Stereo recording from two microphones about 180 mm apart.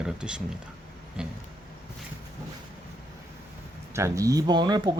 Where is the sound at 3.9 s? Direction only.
15° right (ahead or behind).